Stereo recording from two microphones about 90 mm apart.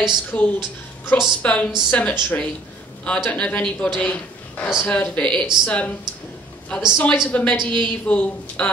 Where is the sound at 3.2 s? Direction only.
15° left (ahead or behind).